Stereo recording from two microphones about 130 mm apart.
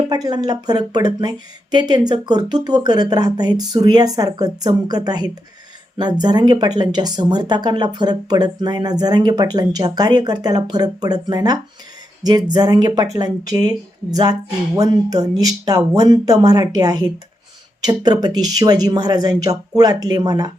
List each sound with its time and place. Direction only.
0.1 s speech: 30° right (ahead or behind)